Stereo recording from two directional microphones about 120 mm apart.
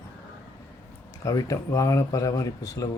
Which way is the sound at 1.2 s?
30° left (ahead or behind).